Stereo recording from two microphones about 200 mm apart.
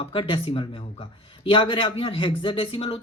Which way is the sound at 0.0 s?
25° left (ahead or behind).